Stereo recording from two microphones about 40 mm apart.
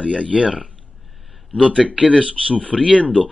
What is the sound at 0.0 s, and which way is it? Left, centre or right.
Speech, right.